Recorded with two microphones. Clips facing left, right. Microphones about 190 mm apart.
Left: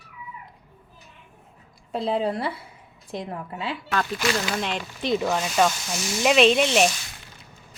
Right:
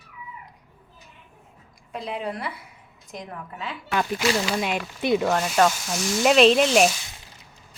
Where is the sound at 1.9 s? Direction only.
30° left (ahead or behind).